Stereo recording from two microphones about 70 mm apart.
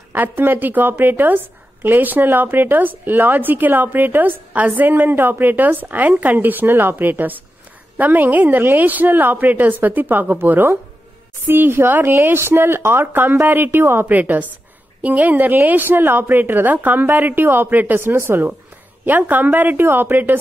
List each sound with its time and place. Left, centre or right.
0.1 s a woman's voice: right